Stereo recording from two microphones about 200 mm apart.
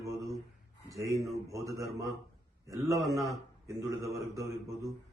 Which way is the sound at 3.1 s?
15° right (ahead or behind).